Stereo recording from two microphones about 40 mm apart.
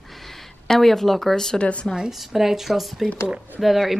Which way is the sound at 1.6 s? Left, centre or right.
Left.